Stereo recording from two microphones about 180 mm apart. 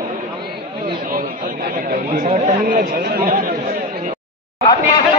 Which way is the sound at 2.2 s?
40° right (ahead or behind).